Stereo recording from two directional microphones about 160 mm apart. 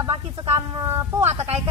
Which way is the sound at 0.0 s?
35° right (ahead or behind).